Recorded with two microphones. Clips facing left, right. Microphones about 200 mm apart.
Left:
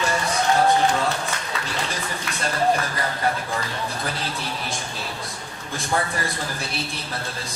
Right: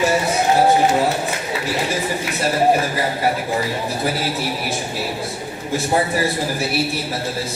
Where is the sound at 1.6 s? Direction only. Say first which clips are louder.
Right 8 dB; 10° right (ahead or behind).